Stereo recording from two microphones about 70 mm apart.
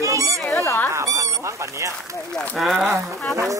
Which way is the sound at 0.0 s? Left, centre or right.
Right.